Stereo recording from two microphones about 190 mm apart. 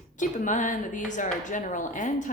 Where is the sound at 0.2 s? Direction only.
40° left (ahead or behind).